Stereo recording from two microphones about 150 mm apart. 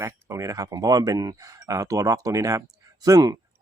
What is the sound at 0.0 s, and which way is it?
Speech, 20° right (ahead or behind).